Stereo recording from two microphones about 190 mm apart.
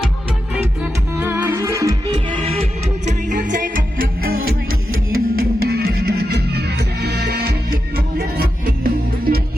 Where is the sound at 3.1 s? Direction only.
40° right (ahead or behind).